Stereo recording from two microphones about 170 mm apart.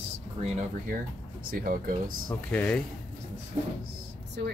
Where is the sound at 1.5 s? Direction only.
55° right (ahead or behind).